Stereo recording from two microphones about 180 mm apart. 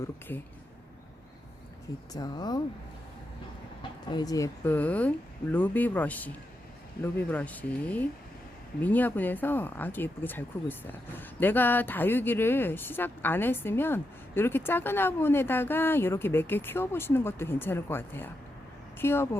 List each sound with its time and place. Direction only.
2.1 s speech: 20° left (ahead or behind)
4.1 s speech: 20° left (ahead or behind)